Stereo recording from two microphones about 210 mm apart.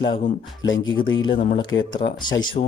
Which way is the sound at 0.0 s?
20° left (ahead or behind).